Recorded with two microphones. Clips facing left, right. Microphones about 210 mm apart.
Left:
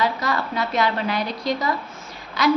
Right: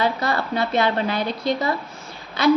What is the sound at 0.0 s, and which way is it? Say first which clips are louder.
A woman's voice: right 1 dB; 30° right (ahead or behind).